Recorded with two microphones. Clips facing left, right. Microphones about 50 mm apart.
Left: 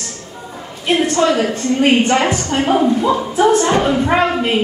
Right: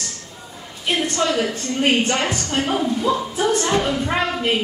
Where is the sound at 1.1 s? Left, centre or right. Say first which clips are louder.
Left 6 dB; left.